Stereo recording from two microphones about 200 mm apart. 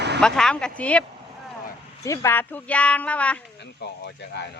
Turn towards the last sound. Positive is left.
turn(degrees=60)  # may be behind; listen again after turning